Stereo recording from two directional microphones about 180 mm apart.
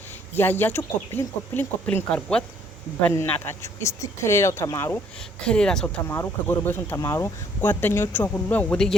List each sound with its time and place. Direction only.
0.3 s speech: 10° left (ahead or behind)
5.5 s speech: 5° left (ahead or behind)